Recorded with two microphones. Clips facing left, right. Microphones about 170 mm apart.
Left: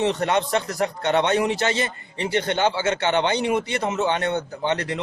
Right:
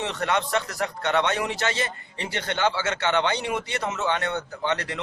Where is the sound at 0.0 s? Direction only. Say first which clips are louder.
Left 5 dB; 20° left (ahead or behind).